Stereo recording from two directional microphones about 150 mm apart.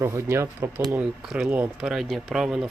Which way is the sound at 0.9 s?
5° right (ahead or behind).